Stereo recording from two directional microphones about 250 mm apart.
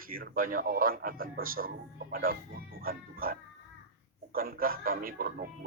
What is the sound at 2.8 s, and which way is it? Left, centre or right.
Music, right.